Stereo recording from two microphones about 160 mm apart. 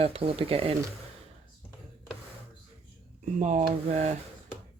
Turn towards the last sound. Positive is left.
turn(degrees=-45)  # may be behind; listen again after turning